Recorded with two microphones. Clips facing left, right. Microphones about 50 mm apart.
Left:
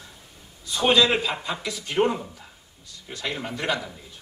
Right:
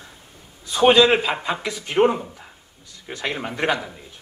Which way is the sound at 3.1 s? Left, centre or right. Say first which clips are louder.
Right 3 dB; right.